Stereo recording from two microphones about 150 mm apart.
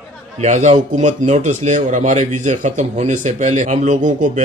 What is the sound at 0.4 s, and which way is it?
Speech, 50° right (ahead or behind).